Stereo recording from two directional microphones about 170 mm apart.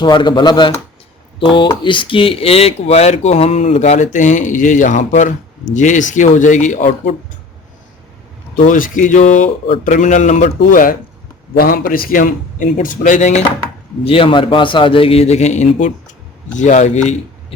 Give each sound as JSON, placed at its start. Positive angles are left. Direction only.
{"t": 0.0, "sound": "speech", "side_deg": 25}
{"t": 8.6, "sound": "speech", "side_deg": 50}
{"t": 14.0, "sound": "speech", "side_deg": 30}